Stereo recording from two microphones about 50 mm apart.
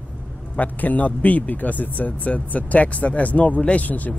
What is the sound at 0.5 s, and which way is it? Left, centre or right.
Speech, left.